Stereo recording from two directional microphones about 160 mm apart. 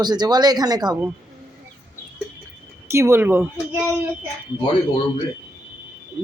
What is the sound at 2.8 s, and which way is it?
Speech, 15° right (ahead or behind).